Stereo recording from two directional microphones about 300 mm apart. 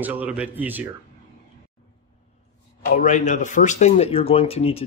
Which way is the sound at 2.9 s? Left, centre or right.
Left.